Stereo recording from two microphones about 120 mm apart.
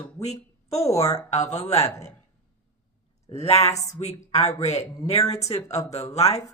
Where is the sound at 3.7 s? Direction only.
65° left (ahead or behind).